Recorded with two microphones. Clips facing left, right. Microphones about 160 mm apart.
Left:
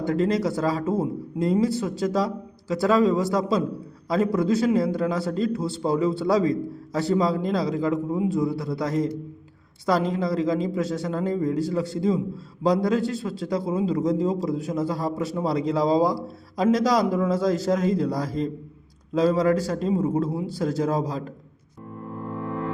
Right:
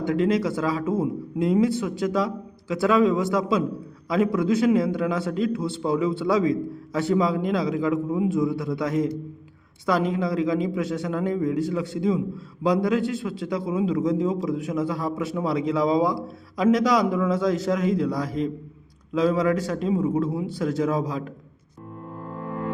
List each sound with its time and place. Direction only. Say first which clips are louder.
0.0 s a man's voice: right 1 dB; 40° left (ahead or behind)
10.1 s a man's voice: even; 35° left (ahead or behind)